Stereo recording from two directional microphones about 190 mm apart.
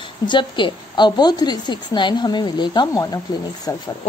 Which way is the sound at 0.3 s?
25° left (ahead or behind).